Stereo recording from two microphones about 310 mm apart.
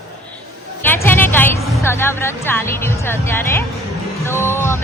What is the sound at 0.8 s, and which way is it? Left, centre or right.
A woman's voice, centre.